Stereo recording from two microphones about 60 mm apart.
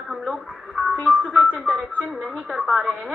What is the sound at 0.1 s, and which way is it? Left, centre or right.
Speech, centre.